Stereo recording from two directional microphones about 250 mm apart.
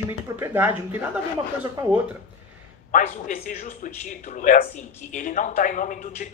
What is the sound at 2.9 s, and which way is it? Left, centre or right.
Speech, left.